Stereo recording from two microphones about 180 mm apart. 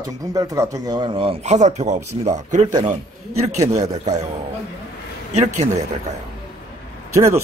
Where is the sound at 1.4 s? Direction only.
40° right (ahead or behind).